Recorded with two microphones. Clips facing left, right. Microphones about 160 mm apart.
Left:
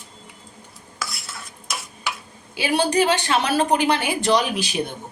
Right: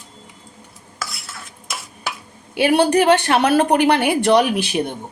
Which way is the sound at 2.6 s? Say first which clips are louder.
Right 5 dB; 60° right (ahead or behind).